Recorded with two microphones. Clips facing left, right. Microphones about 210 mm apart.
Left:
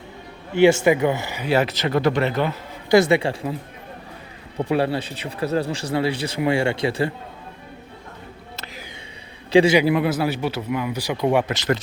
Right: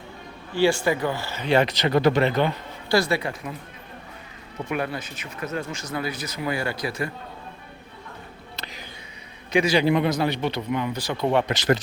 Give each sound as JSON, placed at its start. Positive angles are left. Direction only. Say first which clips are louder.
{"t": 0.5, "sound": "speech", "louder": "left 6 dB", "side_deg": 20}
{"t": 2.9, "sound": "speech", "louder": "left 6 dB", "side_deg": 25}
{"t": 4.5, "sound": "speech", "louder": "left 7 dB", "side_deg": 30}
{"t": 8.5, "sound": "music", "louder": "left 1 dB", "side_deg": 0}
{"t": 9.5, "sound": "a man's voice", "louder": "left 7 dB", "side_deg": 30}
{"t": 9.7, "sound": "speech", "louder": "left 2 dB", "side_deg": 5}